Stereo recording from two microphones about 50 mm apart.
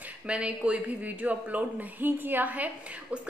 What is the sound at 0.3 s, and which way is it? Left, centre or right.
A woman's voice, right.